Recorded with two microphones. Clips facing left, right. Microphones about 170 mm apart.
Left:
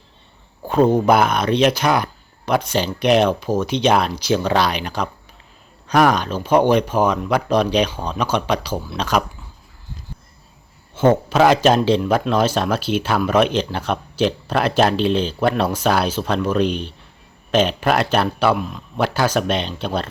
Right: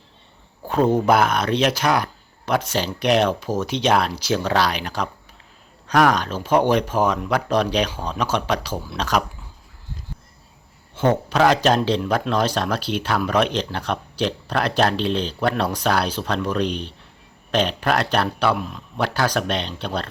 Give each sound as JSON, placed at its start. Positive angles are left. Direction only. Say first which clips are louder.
{"t": 0.7, "sound": "a man's voice", "louder": "left 3 dB", "side_deg": 0}
{"t": 10.9, "sound": "a man's voice", "louder": "left 4 dB", "side_deg": 5}